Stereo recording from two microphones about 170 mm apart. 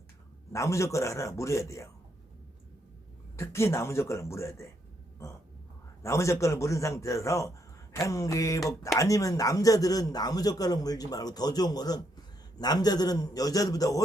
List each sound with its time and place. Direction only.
0.5 s speech: 20° left (ahead or behind)
3.3 s speech: 15° left (ahead or behind)
6.0 s a man's voice: 15° left (ahead or behind)